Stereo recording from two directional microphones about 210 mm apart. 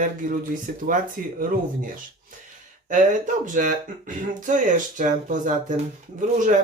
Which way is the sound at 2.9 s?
35° right (ahead or behind).